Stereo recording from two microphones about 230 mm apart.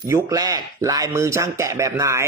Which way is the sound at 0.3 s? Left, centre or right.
Centre.